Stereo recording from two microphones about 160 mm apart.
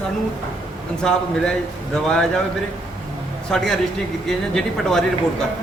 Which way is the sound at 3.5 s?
5° left (ahead or behind).